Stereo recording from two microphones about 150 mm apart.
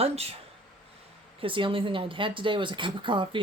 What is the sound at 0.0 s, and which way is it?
Speech, 40° right (ahead or behind).